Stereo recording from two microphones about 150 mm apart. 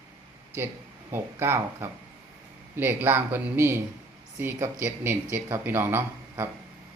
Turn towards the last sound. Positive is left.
turn(degrees=-15)  # may be behind; listen again after turning